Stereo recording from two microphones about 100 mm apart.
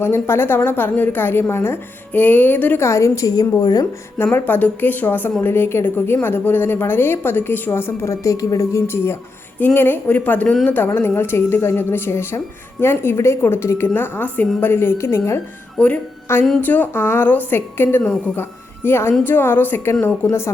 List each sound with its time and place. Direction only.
0.0 s a woman's voice: 25° left (ahead or behind)
4.2 s a woman's voice: 20° left (ahead or behind)
15.8 s a woman's voice: 10° left (ahead or behind)